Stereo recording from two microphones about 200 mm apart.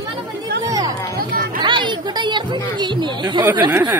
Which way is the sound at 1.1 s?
45° right (ahead or behind).